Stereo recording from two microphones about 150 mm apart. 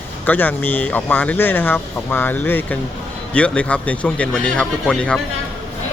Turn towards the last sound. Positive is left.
turn(degrees=5)  # may be behind; listen again after turning